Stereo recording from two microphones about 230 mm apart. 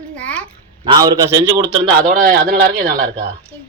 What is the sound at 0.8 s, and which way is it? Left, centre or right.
Speech, centre.